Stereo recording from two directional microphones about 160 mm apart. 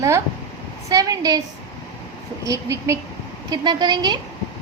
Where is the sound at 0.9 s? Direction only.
20° right (ahead or behind).